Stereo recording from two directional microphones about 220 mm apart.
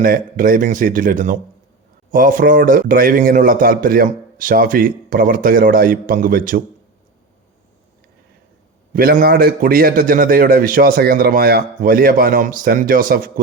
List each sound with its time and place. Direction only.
0.0 s a man's voice: 40° right (ahead or behind)
8.9 s a man's voice: 40° right (ahead or behind)